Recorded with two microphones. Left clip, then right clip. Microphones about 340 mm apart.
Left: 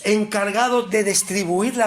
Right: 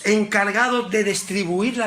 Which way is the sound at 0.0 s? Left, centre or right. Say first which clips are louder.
Right 1 dB; centre.